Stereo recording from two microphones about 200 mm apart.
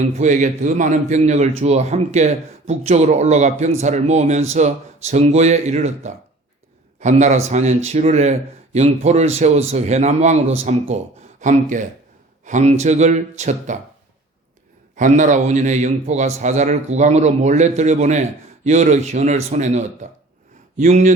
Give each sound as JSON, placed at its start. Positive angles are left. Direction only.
{"t": 0.0, "sound": "a man's voice", "side_deg": -35}
{"t": 14.9, "sound": "a man's voice", "side_deg": -35}